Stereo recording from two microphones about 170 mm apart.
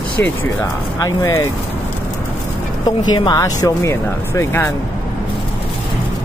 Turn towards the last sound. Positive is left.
turn(degrees=15)  # may be behind; listen again after turning